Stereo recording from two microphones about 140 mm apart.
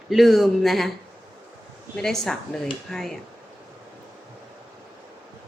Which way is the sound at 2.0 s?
5° left (ahead or behind).